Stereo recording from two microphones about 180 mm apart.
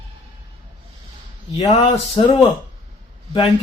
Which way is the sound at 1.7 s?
35° left (ahead or behind).